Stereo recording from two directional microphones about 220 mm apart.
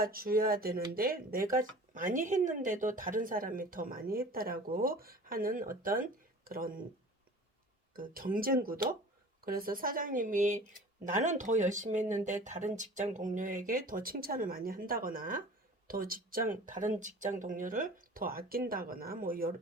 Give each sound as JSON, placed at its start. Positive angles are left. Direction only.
{"t": 0.0, "sound": "speech", "side_deg": -40}
{"t": 7.9, "sound": "speech", "side_deg": -40}